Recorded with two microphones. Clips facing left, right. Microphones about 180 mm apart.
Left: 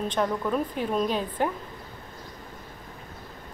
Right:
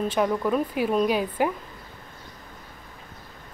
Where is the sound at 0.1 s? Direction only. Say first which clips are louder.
Right 2 dB; 10° right (ahead or behind).